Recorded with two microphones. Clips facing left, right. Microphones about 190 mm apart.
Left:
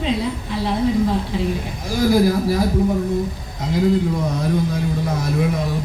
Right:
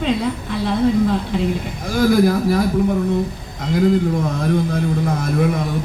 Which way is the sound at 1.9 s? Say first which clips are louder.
Right 1 dB; 55° right (ahead or behind).